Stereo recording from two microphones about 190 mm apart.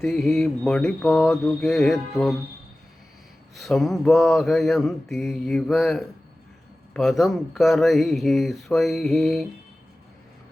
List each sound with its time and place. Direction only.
0.0 s mantra: centre (ahead or behind)
3.5 s mantra: centre (ahead or behind)